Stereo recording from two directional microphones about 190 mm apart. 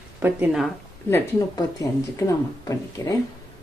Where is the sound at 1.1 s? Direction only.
15° left (ahead or behind).